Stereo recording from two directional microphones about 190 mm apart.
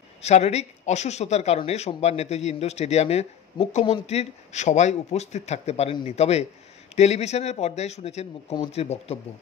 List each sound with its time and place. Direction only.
0.2 s speech: 35° left (ahead or behind)